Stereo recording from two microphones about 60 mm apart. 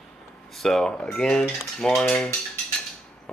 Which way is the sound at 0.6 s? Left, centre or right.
Centre.